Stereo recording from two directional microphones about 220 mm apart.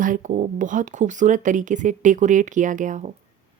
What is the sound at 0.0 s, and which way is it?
A woman's voice, 35° right (ahead or behind).